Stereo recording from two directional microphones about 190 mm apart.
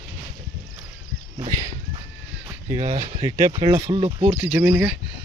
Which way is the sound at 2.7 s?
15° right (ahead or behind).